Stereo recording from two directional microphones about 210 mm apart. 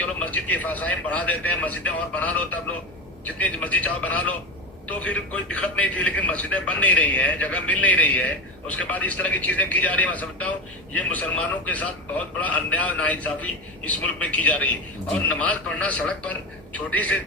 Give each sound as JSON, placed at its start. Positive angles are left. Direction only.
{"t": 0.0, "sound": "a man's voice", "side_deg": 5}